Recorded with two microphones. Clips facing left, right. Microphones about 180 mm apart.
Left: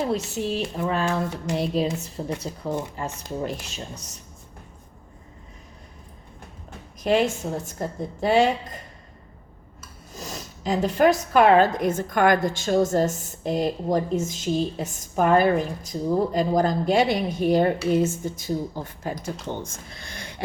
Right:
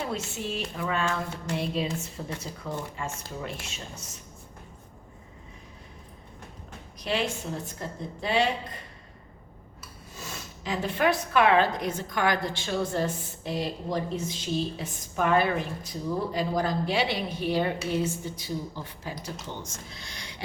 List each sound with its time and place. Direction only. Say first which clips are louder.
0.1 s a woman's voice: left 7 dB; 35° left (ahead or behind)
7.0 s speech: left 8 dB; 50° left (ahead or behind)
10.2 s speech: left 5 dB; 40° left (ahead or behind)